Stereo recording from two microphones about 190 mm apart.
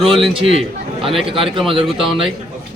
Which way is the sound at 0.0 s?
30° right (ahead or behind).